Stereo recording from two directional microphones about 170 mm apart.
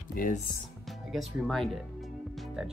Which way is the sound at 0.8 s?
Centre (ahead or behind).